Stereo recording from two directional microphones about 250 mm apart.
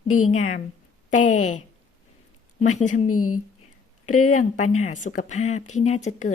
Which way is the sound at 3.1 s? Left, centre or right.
Left.